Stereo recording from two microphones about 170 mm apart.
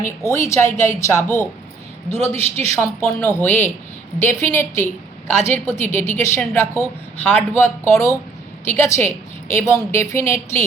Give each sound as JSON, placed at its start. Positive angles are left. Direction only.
{"t": 0.3, "sound": "a woman's voice", "side_deg": 15}